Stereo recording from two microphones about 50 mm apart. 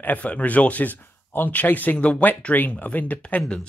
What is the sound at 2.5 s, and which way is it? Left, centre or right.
Speech, left.